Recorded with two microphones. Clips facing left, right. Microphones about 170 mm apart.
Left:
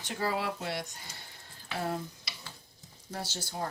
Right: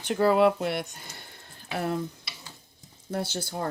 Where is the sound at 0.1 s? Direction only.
60° right (ahead or behind).